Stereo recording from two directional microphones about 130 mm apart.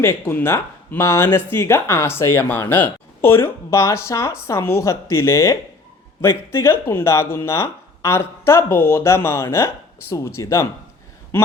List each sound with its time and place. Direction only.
0.0 s speech: 20° left (ahead or behind)